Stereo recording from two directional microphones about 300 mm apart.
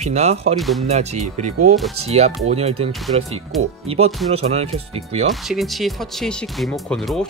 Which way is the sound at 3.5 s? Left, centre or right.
Centre.